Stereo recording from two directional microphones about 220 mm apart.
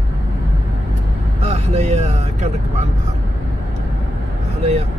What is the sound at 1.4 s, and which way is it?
Speech, 30° right (ahead or behind).